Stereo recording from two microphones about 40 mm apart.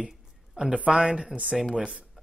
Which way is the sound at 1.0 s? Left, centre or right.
Right.